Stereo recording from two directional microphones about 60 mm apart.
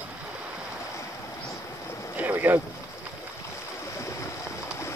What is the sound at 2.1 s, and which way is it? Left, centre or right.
Boat, right.